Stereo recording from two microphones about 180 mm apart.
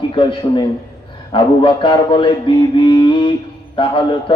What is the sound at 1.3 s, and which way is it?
A man's voice, 30° left (ahead or behind).